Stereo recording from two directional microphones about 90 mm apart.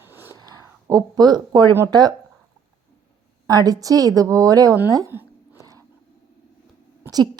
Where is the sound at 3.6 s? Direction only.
45° right (ahead or behind).